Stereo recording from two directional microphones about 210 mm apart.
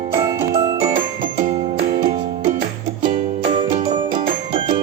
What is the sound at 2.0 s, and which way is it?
Music, 30° right (ahead or behind).